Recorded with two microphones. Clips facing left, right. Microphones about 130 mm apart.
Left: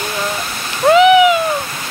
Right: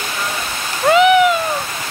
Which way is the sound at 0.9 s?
Centre (ahead or behind).